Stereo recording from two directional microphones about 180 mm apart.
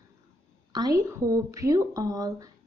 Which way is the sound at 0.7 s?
20° right (ahead or behind).